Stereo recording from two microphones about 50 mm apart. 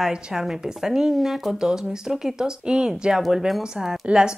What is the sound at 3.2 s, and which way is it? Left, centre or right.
Speech, centre.